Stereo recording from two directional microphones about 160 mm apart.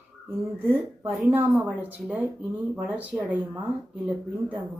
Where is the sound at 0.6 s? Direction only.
15° right (ahead or behind).